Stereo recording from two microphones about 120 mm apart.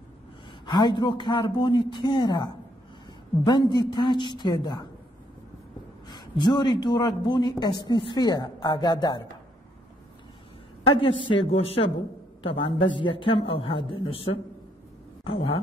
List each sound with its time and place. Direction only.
0.7 s speech: 40° left (ahead or behind)
6.0 s speech: 40° left (ahead or behind)
11.0 s a man's voice: 45° left (ahead or behind)
12.4 s a man's voice: 45° left (ahead or behind)